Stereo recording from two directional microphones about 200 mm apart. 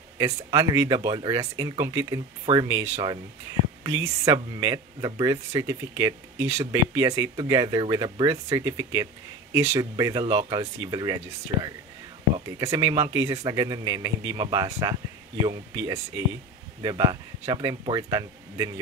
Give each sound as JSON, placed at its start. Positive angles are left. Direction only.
{"t": 0.5, "sound": "speech", "side_deg": -20}